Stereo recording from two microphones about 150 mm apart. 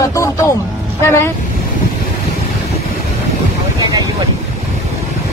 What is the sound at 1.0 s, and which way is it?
Speech, 15° left (ahead or behind).